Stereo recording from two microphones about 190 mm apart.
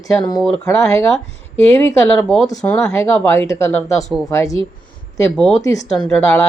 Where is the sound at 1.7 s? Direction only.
15° left (ahead or behind).